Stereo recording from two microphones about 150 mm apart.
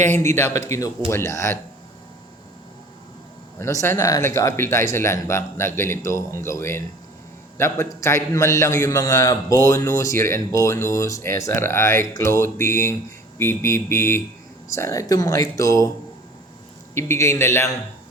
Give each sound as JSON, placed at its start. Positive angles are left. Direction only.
{"t": 0.2, "sound": "speech", "side_deg": 15}
{"t": 3.6, "sound": "speech", "side_deg": 20}
{"t": 16.9, "sound": "speech", "side_deg": 15}